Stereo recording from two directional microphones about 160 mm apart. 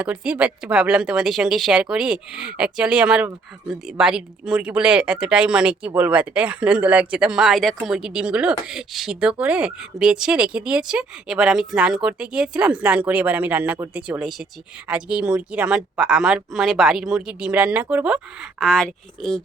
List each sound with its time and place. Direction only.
0.0 s speech: 10° right (ahead or behind)
18.6 s speech: 5° left (ahead or behind)